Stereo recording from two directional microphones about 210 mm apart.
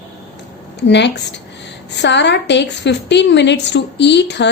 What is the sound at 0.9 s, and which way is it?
A woman's voice, 55° left (ahead or behind).